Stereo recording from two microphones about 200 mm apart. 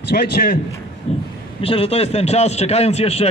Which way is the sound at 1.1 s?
30° left (ahead or behind).